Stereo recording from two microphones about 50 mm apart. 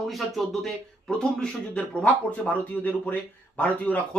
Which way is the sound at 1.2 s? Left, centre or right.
Centre.